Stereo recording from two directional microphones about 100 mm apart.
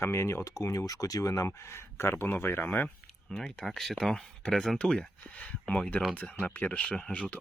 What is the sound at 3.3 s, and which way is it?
Speech, 5° left (ahead or behind).